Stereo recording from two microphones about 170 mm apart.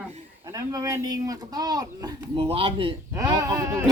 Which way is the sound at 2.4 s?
35° right (ahead or behind).